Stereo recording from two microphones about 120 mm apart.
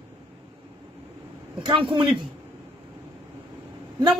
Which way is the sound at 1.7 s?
45° right (ahead or behind).